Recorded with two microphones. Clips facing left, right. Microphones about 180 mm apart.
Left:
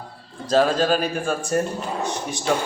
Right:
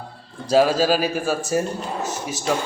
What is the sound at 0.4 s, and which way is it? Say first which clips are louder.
A man's voice: right 2 dB; 10° right (ahead or behind).